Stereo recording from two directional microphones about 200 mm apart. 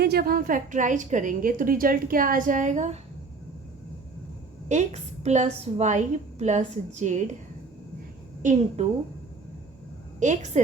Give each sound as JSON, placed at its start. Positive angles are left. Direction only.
{"t": 0.0, "sound": "a woman's voice", "side_deg": -50}
{"t": 4.7, "sound": "a woman's voice", "side_deg": -35}
{"t": 8.4, "sound": "a woman's voice", "side_deg": -35}
{"t": 10.2, "sound": "a woman's voice", "side_deg": -35}